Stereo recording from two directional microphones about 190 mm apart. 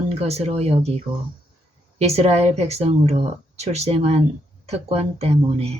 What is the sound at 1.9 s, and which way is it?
Speech, 35° right (ahead or behind).